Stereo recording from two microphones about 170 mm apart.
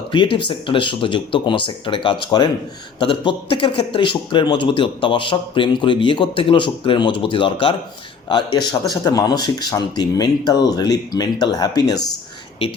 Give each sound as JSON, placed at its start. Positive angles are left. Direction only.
{"t": 0.1, "sound": "speech", "side_deg": 30}